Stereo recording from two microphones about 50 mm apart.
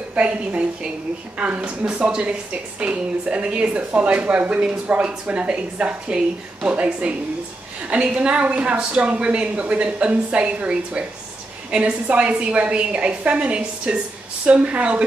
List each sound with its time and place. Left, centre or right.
0.1 s a woman's voice: right